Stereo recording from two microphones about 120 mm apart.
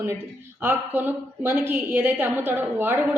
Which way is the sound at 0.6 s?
15° right (ahead or behind).